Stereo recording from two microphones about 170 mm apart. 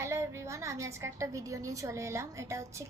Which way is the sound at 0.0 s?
15° right (ahead or behind).